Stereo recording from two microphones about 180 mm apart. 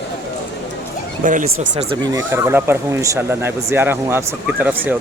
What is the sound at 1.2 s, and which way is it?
Speech, 45° right (ahead or behind).